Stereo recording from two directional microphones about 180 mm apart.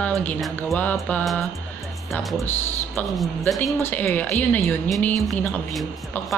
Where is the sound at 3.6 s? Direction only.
10° left (ahead or behind).